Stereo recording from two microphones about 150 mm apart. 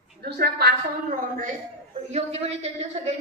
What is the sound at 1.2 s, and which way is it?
Speech, 65° right (ahead or behind).